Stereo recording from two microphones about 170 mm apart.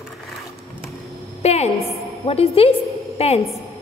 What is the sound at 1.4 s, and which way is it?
A woman's voice, 40° left (ahead or behind).